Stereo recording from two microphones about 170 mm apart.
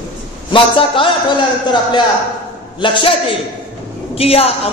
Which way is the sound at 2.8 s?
30° left (ahead or behind).